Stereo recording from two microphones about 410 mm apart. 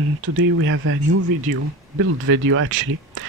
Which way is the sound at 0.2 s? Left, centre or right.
Right.